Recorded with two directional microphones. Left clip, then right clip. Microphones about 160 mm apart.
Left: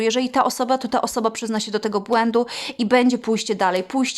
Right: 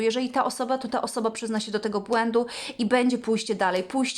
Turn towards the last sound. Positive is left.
turn(degrees=25)  # may be behind; listen again after turning